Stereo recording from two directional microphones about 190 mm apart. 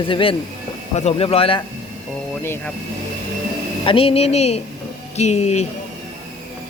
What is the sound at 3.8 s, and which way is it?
A woman's voice, 30° left (ahead or behind).